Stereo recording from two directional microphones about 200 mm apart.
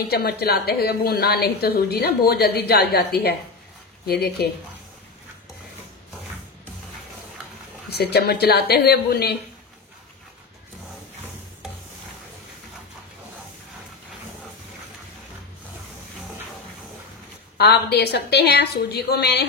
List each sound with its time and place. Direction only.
0.1 s a woman's voice: 50° left (ahead or behind)
7.9 s a woman's voice: 50° left (ahead or behind)
17.6 s a woman's voice: 55° left (ahead or behind)